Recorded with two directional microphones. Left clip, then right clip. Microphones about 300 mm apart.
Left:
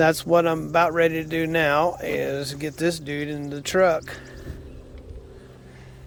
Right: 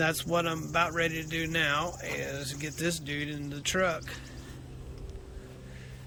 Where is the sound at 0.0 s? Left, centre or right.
Centre.